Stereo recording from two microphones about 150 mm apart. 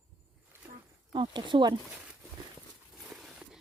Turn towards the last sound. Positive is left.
turn(degrees=0)  # may be behind; listen again after turning